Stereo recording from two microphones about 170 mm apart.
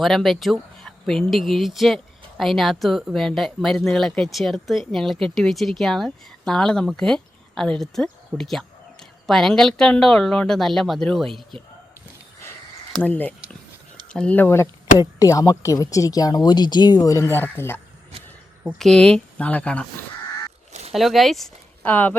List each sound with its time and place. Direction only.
0.0 s speech: centre (ahead or behind)
11.5 s speech: 30° right (ahead or behind)
12.9 s speech: 10° left (ahead or behind)
18.8 s speech: 5° left (ahead or behind)
20.9 s speech: centre (ahead or behind)